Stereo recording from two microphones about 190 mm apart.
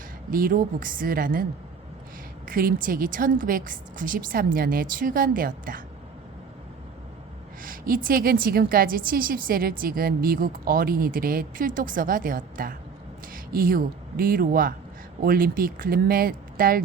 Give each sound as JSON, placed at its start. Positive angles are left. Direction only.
{"t": 0.3, "sound": "a woman's voice", "side_deg": -50}
{"t": 2.5, "sound": "a woman's voice", "side_deg": -50}
{"t": 7.6, "sound": "a woman's voice", "side_deg": -45}